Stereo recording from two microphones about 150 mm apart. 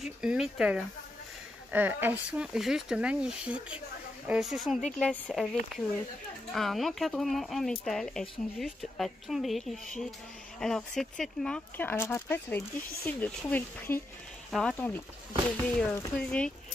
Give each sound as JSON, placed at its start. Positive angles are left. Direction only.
{"t": 0.0, "sound": "speech", "side_deg": -5}
{"t": 4.9, "sound": "speech", "side_deg": 10}
{"t": 14.5, "sound": "speech", "side_deg": 0}
{"t": 15.6, "sound": "speech", "side_deg": 20}
{"t": 16.2, "sound": "speech", "side_deg": 5}